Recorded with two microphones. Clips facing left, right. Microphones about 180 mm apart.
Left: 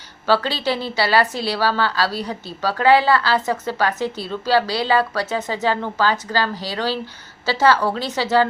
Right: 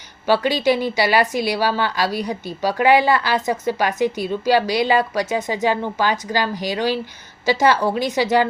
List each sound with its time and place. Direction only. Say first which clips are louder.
0.3 s a woman's voice: right 3 dB; 15° right (ahead or behind)